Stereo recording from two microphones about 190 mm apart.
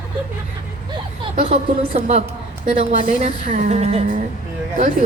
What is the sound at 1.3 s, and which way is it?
A woman's voice, 35° right (ahead or behind).